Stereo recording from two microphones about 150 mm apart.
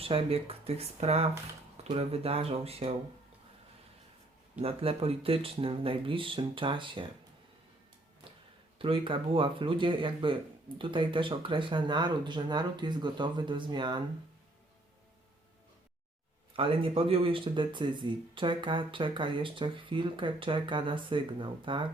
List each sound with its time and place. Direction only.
0.0 s speech: 40° right (ahead or behind)
4.6 s speech: 40° right (ahead or behind)
8.8 s speech: 35° right (ahead or behind)
16.6 s speech: 40° right (ahead or behind)